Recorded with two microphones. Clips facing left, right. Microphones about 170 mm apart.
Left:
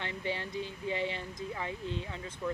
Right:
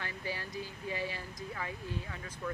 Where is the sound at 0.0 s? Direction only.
25° left (ahead or behind).